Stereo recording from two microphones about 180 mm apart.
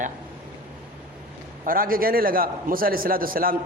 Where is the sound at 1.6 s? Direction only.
50° right (ahead or behind).